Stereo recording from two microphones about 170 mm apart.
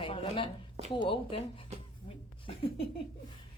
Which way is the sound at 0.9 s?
30° left (ahead or behind).